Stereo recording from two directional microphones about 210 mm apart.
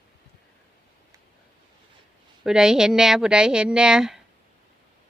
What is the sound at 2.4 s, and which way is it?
Speech, 5° right (ahead or behind).